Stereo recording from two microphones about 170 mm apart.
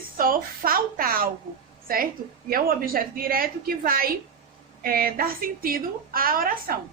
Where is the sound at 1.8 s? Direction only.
60° right (ahead or behind).